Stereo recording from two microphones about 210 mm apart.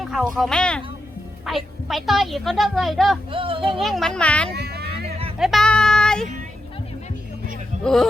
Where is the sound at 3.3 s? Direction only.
25° right (ahead or behind).